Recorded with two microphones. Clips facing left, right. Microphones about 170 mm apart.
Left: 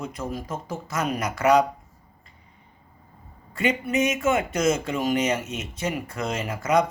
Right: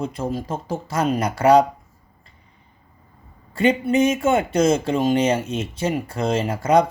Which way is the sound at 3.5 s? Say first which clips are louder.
Right 6 dB; 30° right (ahead or behind).